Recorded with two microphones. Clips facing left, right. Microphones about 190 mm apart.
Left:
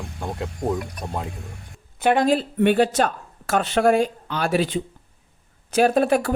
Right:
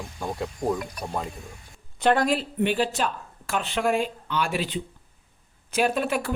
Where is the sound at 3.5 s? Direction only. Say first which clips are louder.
Left 6 dB; 40° left (ahead or behind).